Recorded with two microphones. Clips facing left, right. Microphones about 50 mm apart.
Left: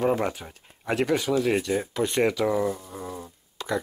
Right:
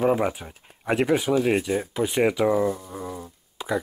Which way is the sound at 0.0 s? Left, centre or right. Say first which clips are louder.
Right 2 dB; centre.